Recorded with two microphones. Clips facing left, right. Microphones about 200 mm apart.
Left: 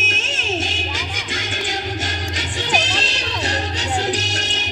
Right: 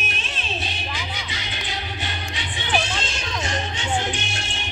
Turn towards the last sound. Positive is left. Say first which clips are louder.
# left 5 dB
turn(degrees=40)  # may be behind; listen again after turning